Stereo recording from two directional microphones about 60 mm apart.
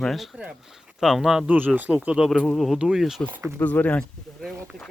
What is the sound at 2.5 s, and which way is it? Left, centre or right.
Speech, centre.